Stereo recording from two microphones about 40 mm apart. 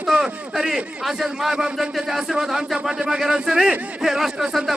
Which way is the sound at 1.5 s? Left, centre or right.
Right.